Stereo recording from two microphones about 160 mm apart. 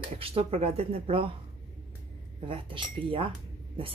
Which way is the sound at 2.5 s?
35° right (ahead or behind).